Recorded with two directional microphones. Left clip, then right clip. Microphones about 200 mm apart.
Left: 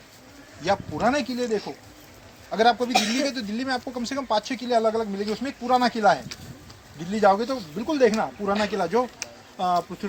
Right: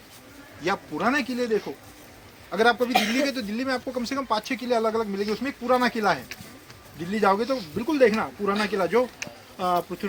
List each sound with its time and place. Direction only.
1.0 s speech: 45° left (ahead or behind)
2.5 s speech: 45° left (ahead or behind)
2.9 s speech: 5° right (ahead or behind)
3.2 s speech: 45° left (ahead or behind)